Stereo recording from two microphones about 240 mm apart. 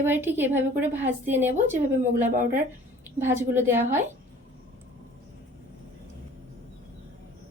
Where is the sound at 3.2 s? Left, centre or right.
Centre.